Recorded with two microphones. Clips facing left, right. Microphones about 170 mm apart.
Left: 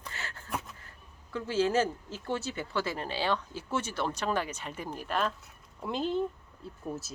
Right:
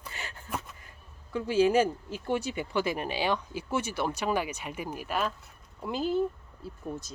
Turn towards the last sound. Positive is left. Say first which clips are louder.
# right 1 dB
turn(degrees=5)  # may be behind; listen again after turning